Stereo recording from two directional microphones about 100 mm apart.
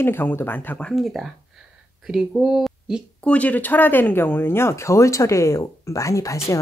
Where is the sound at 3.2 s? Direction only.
15° left (ahead or behind).